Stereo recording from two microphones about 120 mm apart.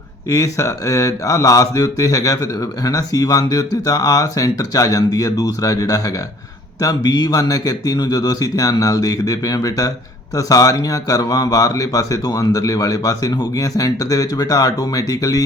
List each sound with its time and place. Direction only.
0.3 s speech: 30° left (ahead or behind)